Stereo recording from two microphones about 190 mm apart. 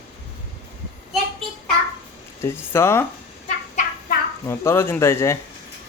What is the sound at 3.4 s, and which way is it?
Chicken, 40° left (ahead or behind).